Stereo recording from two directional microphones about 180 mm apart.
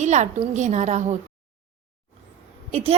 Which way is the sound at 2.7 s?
35° right (ahead or behind).